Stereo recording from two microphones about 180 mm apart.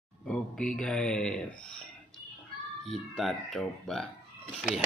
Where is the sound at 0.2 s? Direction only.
5° left (ahead or behind).